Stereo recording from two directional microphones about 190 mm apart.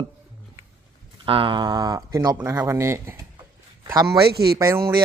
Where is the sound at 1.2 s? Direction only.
30° right (ahead or behind).